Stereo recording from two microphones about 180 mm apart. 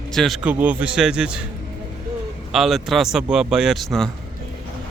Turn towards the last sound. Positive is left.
turn(degrees=0)  # may be behind; listen again after turning